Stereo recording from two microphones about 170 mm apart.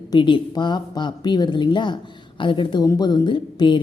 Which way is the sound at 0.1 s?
30° left (ahead or behind).